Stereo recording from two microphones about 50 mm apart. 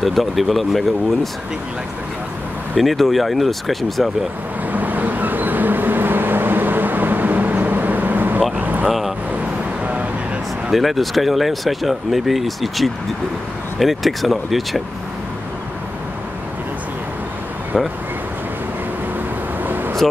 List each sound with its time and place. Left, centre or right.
0.0 s speech: centre
2.8 s speech: centre
4.7 s vehicle: right
8.8 s vehicle: centre
10.7 s speech: centre
17.7 s speech: centre
19.6 s vehicle: right